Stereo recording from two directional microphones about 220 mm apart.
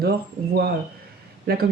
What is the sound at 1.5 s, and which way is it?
Speech, 45° right (ahead or behind).